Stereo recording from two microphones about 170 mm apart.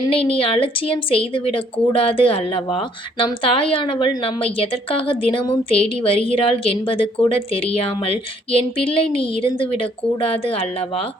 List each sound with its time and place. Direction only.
0.1 s a woman's voice: 35° left (ahead or behind)